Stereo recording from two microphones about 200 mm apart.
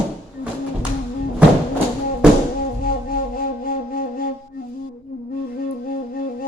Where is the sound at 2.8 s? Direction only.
45° left (ahead or behind).